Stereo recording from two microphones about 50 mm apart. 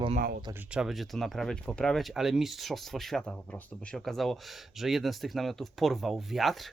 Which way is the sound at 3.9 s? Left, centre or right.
Centre.